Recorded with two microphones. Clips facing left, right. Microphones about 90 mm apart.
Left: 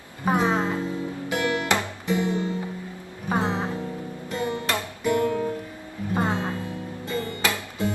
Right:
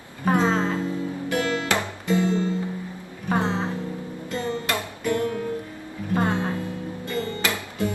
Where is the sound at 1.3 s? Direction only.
20° left (ahead or behind).